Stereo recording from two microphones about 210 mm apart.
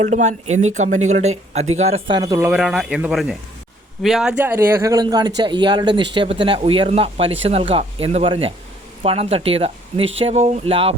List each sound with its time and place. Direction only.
0.0 s speech: 35° right (ahead or behind)